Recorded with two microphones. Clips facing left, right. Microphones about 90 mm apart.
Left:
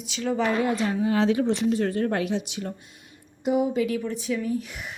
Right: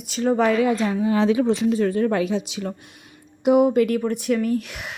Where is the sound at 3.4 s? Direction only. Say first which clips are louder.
Right 7 dB; 65° right (ahead or behind); by 4.9 s 85° right.